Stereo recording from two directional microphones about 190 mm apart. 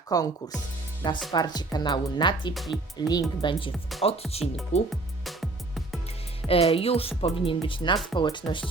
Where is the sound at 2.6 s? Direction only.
Centre (ahead or behind).